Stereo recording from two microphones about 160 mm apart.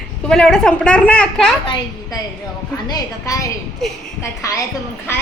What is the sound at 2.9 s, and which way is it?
Speech, 20° left (ahead or behind).